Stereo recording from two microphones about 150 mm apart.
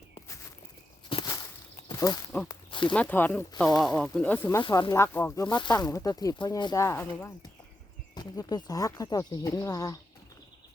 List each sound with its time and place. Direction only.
1.1 s a sound: 25° left (ahead or behind)
2.5 s a sound: 35° left (ahead or behind)
2.9 s speech: 10° left (ahead or behind)
3.7 s speech: 25° left (ahead or behind)
4.0 s speech: 10° left (ahead or behind)
4.7 s speech: 25° left (ahead or behind)
5.5 s speech: 30° left (ahead or behind)
8.1 s speech: 25° left (ahead or behind)